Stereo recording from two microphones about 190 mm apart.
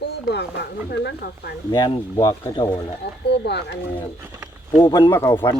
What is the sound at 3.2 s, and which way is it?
Speech, 60° left (ahead or behind).